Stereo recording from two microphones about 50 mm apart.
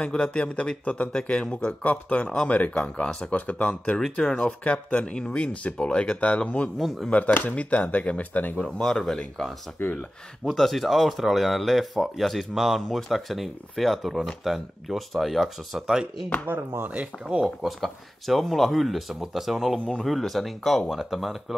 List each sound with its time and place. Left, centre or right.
0.0 s speech: centre
2.2 s speech: centre
2.5 s speech: left
8.8 s speech: centre
9.8 s speech: left
10.4 s speech: centre
15.9 s speech: centre
16.4 s speech: right
17.2 s speech: centre
17.6 s speech: centre